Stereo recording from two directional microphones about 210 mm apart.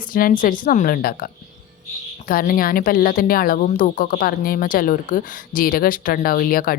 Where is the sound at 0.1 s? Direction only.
40° left (ahead or behind).